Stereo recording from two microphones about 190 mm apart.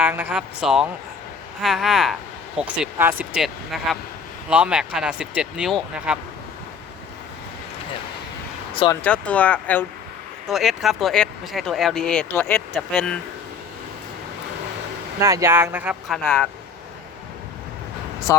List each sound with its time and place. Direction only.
0.0 s speech: 10° right (ahead or behind)
9.0 s speech: 5° left (ahead or behind)
15.2 s speech: 15° right (ahead or behind); by 16.5 s 5° left (ahead or behind)
18.3 s speech: 20° left (ahead or behind)